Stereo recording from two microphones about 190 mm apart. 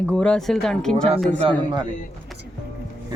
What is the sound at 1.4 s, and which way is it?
Speech, 25° right (ahead or behind).